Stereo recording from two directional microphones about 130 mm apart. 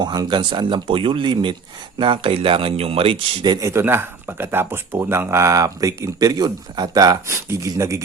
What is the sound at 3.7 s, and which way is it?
Speech, 20° right (ahead or behind).